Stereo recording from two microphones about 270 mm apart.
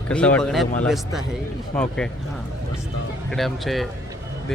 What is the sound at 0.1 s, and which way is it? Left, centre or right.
Speech, centre.